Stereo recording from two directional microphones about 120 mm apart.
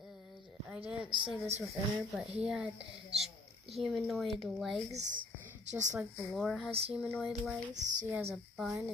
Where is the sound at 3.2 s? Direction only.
60° right (ahead or behind).